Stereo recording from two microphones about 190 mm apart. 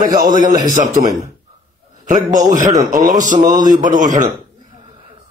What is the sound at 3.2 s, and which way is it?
Speech, 40° right (ahead or behind).